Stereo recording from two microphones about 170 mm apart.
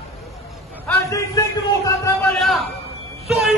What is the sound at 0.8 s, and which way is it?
A man's voice, 15° left (ahead or behind).